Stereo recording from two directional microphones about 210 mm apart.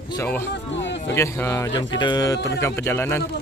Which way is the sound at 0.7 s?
60° left (ahead or behind).